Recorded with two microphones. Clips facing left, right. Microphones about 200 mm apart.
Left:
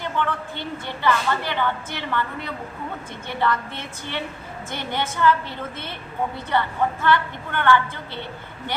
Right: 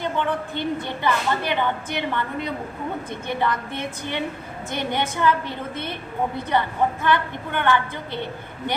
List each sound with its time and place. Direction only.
0.0 s a woman's voice: 15° right (ahead or behind)